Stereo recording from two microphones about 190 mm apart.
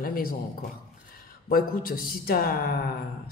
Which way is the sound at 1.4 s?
50° left (ahead or behind).